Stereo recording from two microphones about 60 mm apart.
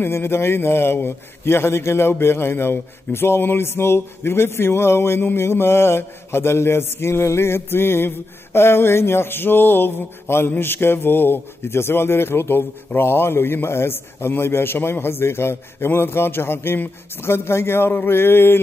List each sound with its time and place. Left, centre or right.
0.0 s a man's voice: left
8.5 s mantra: left
10.5 s a man's voice: left